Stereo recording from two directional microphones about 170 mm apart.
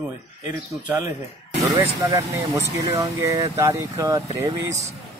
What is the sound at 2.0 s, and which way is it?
Speech, 20° right (ahead or behind).